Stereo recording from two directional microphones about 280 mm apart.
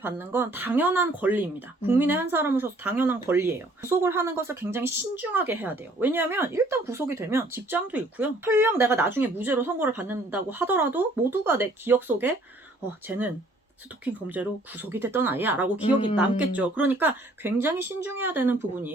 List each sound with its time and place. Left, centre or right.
0.0 s speech: centre
15.8 s speech: centre
16.1 s speech: centre